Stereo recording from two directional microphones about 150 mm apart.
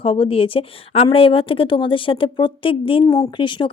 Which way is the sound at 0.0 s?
35° left (ahead or behind).